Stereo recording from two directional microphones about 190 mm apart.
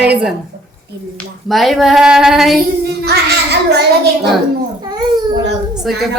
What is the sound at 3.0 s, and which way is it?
Child singing, 60° right (ahead or behind).